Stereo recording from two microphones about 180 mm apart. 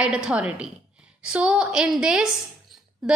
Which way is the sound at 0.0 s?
5° right (ahead or behind).